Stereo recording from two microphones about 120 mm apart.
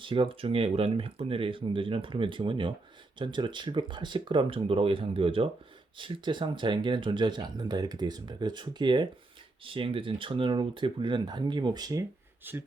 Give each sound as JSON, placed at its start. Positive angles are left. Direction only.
{"t": 0.0, "sound": "speech", "side_deg": -45}
{"t": 12.4, "sound": "speech", "side_deg": -15}